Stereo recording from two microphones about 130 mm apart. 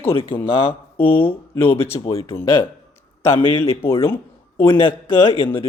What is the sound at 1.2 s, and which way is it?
A man's voice, 15° left (ahead or behind).